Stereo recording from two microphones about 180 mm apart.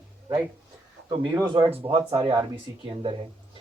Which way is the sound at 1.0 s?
25° right (ahead or behind).